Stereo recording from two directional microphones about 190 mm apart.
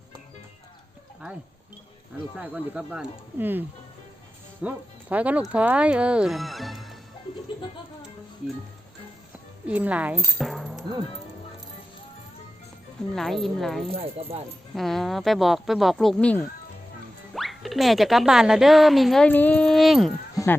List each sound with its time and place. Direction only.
2.3 s speech: 5° right (ahead or behind)
9.6 s speech: 10° right (ahead or behind)
13.1 s speech: centre (ahead or behind)
13.9 s speech: 30° right (ahead or behind)
14.8 s speech: centre (ahead or behind)